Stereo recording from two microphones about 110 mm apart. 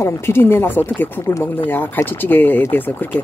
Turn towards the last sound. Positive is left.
turn(degrees=20)  # may be behind; listen again after turning